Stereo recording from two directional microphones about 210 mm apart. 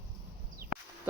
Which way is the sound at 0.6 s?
45° right (ahead or behind).